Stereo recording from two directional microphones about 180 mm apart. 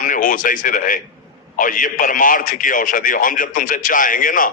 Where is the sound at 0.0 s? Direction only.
50° left (ahead or behind).